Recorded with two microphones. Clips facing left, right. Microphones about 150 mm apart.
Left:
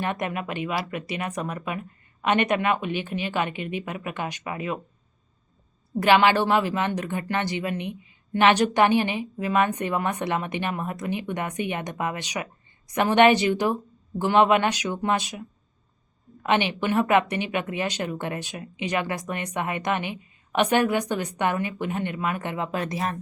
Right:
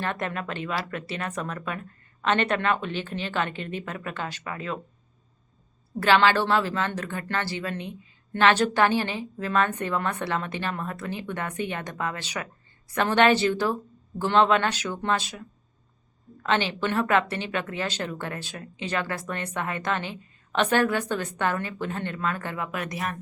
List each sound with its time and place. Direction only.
0.0 s speech: 15° left (ahead or behind)
6.0 s speech: 15° left (ahead or behind)